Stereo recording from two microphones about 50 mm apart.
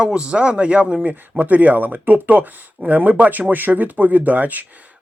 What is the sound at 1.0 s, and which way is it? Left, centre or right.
Speech, right.